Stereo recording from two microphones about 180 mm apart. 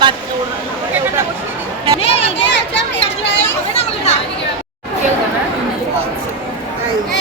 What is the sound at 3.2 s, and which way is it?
Children playing, 80° left.